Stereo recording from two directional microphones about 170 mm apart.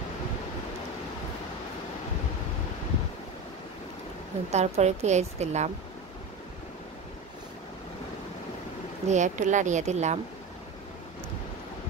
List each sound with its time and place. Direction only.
4.5 s a woman's voice: 40° right (ahead or behind)
9.0 s speech: 45° right (ahead or behind)